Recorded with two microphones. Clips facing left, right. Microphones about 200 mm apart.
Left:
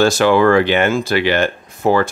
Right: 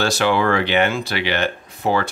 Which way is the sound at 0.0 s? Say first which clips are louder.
Left 6 dB; 45° left (ahead or behind).